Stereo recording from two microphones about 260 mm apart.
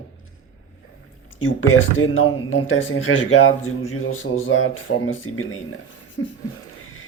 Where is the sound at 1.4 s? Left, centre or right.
Left.